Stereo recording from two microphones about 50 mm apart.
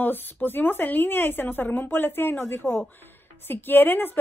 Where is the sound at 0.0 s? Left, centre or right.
Left.